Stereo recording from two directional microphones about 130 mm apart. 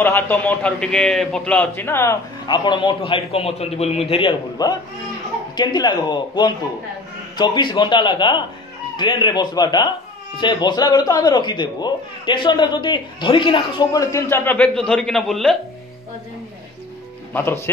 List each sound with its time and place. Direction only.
0.0 s a man's voice: 15° left (ahead or behind)
2.4 s a man's voice: 35° left (ahead or behind)
13.9 s a man's voice: 20° left (ahead or behind); by 15.5 s centre (ahead or behind)
17.3 s speech: 20° left (ahead or behind)